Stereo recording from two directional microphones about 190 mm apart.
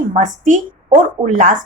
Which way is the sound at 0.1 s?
40° right (ahead or behind).